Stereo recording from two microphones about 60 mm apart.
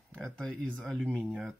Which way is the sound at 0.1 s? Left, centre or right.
Centre.